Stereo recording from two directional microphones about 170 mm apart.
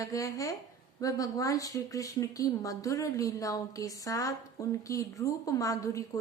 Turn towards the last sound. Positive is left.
turn(degrees=20)  # may be behind; listen again after turning